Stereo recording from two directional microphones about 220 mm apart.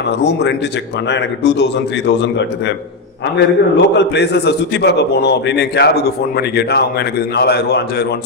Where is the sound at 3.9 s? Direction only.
50° left (ahead or behind).